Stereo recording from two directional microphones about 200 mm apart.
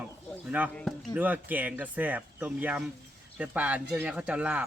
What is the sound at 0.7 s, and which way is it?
Speech, 5° left (ahead or behind).